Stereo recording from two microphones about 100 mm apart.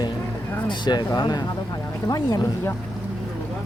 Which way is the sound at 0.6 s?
50° left (ahead or behind).